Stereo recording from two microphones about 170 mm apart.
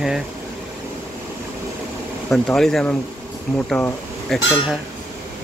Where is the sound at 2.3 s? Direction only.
Centre (ahead or behind).